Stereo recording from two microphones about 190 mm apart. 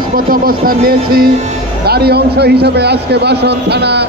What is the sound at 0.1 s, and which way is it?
A man's voice, 50° right (ahead or behind).